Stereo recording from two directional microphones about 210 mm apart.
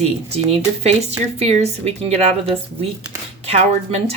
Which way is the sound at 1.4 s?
30° right (ahead or behind).